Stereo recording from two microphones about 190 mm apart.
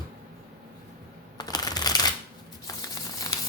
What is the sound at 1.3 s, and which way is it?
Shuffling cards, 20° left (ahead or behind).